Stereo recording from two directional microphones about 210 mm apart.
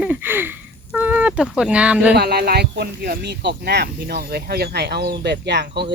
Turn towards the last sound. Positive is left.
turn(degrees=-55)  # may be behind; listen again after turning